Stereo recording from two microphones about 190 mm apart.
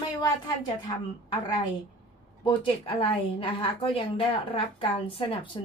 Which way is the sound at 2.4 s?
25° left (ahead or behind).